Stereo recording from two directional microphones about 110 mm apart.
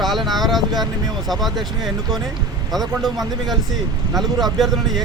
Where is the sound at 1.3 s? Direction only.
Centre (ahead or behind).